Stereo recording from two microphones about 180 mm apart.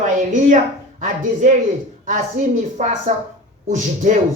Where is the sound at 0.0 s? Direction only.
45° right (ahead or behind).